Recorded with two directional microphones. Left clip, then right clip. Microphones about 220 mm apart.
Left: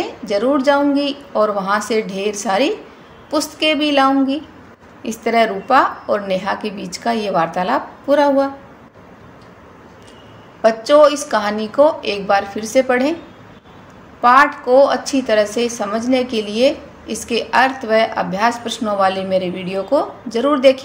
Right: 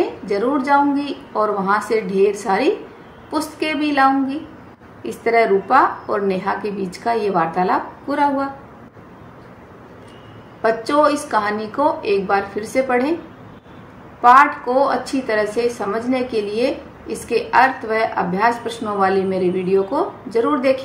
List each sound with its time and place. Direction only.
0.3 s a woman's voice: 30° left (ahead or behind)
10.6 s a woman's voice: 30° left (ahead or behind)
14.2 s a woman's voice: 35° left (ahead or behind)